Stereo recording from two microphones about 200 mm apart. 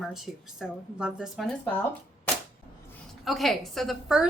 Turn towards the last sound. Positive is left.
turn(degrees=0)  # may be behind; listen again after turning